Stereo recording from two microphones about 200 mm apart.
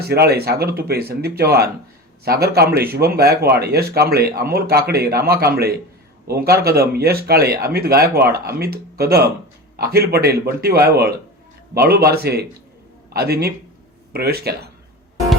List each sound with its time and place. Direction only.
0.0 s speech: 55° right (ahead or behind)